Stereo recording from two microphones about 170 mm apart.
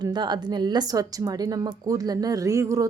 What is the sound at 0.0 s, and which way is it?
A woman's voice, 25° right (ahead or behind).